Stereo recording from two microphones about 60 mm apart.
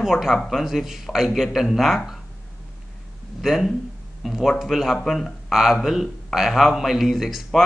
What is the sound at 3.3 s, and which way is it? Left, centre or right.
A man's voice, centre.